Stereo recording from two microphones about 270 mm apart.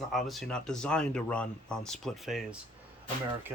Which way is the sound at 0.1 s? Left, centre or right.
Centre.